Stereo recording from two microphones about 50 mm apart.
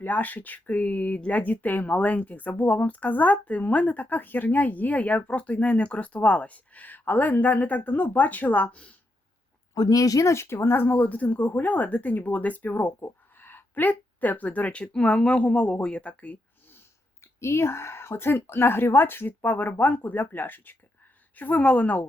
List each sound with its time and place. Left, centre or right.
0.0 s speech: left
9.7 s speech: left
10.4 s speech: left
11.1 s a woman's voice: left
17.2 s speech: left
19.4 s a woman's voice: left